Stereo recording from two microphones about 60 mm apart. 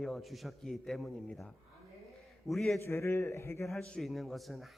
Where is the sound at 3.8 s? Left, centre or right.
Centre.